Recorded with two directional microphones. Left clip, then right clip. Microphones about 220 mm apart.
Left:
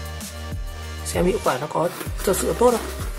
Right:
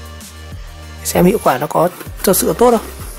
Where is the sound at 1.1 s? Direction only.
45° right (ahead or behind).